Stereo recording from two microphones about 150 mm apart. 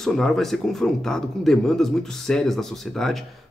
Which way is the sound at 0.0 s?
5° left (ahead or behind).